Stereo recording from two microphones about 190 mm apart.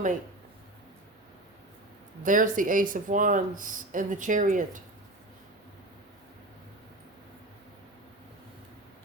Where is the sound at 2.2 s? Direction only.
45° right (ahead or behind).